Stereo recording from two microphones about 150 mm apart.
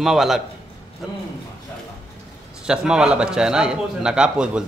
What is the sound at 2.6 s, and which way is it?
A man's voice, 5° right (ahead or behind).